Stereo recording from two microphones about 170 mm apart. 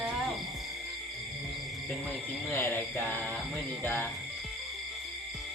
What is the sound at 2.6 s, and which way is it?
Speech, 10° left (ahead or behind).